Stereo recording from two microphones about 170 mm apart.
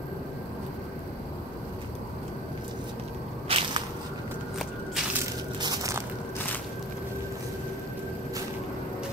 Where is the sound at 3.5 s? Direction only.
35° right (ahead or behind).